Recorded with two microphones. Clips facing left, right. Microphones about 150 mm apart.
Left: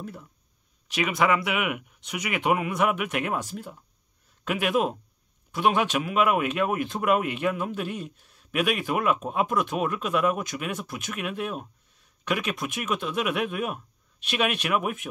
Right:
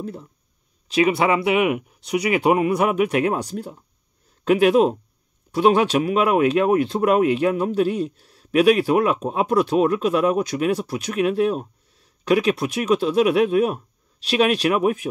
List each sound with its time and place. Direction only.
0.0 s speech: 30° right (ahead or behind)